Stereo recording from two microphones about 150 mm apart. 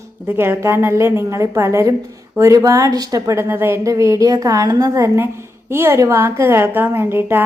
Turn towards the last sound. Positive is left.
turn(degrees=-15)  # may be behind; listen again after turning